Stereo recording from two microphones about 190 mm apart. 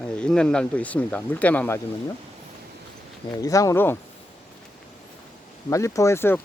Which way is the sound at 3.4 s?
15° left (ahead or behind).